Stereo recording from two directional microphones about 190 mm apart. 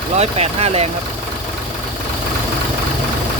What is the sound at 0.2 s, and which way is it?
Speech, 35° right (ahead or behind).